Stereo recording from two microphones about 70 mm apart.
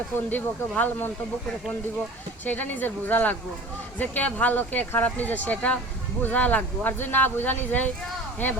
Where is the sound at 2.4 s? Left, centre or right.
Left.